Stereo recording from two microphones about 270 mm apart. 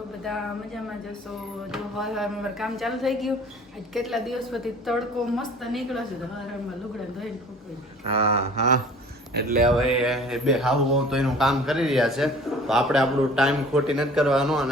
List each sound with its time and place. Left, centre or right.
1.7 s a man's voice: centre
8.0 s a sound: right
9.3 s speech: right
9.6 s a man's voice: centre